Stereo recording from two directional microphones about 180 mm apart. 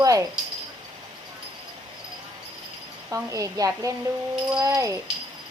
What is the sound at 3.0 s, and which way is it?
Speech, 15° right (ahead or behind).